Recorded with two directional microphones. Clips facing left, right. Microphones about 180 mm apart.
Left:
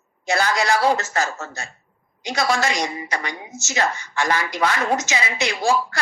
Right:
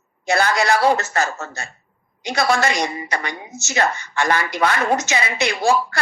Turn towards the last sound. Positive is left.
turn(degrees=-60)  # may be behind; listen again after turning